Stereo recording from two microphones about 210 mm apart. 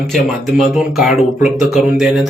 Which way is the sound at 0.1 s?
Centre (ahead or behind).